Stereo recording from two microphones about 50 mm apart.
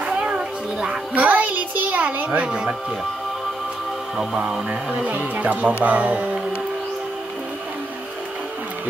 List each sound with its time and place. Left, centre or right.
0.2 s music: centre
1.2 s a sound: right
2.4 s speech: right
4.4 s speech: right